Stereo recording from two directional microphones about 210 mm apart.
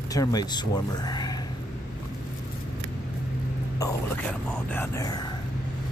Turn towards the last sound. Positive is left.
turn(degrees=15)  # may be behind; listen again after turning